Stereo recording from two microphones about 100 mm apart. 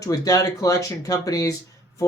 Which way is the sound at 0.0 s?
35° left (ahead or behind).